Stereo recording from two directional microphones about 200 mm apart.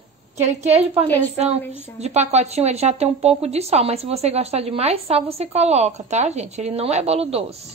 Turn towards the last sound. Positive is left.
turn(degrees=-30)  # may be behind; listen again after turning